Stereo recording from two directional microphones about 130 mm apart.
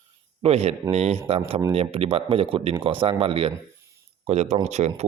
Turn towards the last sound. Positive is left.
turn(degrees=-60)  # may be behind; listen again after turning